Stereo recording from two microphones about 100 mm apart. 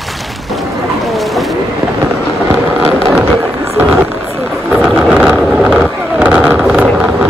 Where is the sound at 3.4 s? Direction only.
20° right (ahead or behind).